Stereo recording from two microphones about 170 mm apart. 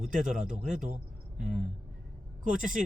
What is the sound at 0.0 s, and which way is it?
Speech, 50° right (ahead or behind).